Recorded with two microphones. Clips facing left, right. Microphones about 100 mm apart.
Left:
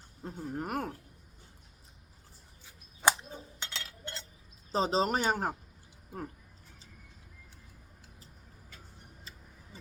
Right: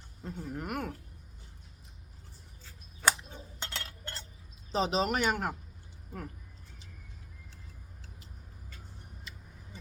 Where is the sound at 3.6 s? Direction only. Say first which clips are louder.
Right 6 dB; 45° right (ahead or behind).